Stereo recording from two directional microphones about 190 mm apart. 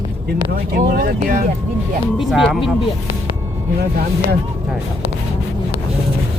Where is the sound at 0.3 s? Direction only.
55° right (ahead or behind).